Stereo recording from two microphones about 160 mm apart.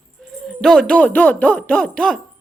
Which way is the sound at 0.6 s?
5° left (ahead or behind).